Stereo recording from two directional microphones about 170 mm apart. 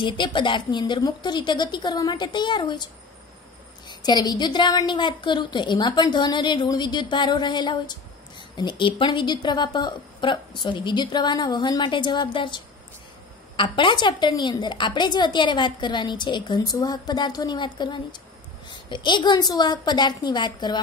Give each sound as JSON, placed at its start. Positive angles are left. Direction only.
{"t": 0.0, "sound": "a woman's voice", "side_deg": 30}